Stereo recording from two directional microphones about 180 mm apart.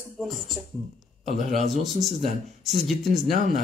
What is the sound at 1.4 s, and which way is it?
Speech, 40° right (ahead or behind).